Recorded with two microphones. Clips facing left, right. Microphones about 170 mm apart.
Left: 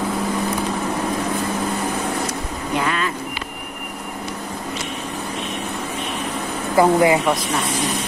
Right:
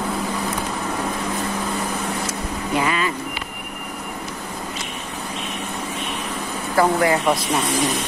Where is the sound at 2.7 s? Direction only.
5° right (ahead or behind).